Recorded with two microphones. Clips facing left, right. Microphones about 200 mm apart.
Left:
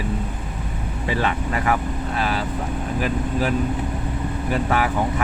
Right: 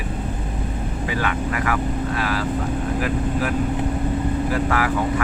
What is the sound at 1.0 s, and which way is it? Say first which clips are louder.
Speech: left 2 dB; 25° left (ahead or behind).